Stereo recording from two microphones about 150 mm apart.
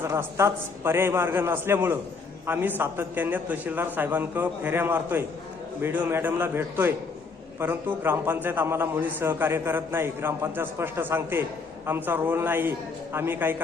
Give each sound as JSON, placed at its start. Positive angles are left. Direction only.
{"t": 0.0, "sound": "a man's voice", "side_deg": -15}